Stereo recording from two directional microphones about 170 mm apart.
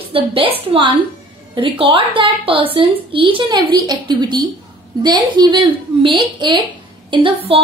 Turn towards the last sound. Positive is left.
turn(degrees=-30)  # may be behind; listen again after turning